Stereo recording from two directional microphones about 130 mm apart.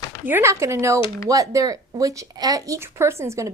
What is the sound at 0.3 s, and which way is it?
A woman's voice, 20° right (ahead or behind).